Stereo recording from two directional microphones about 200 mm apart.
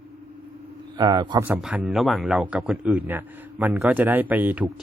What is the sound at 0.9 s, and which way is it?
Speech, 20° right (ahead or behind).